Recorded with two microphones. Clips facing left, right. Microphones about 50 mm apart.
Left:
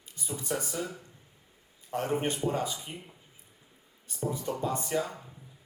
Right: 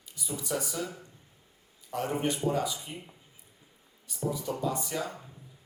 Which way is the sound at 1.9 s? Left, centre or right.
Left.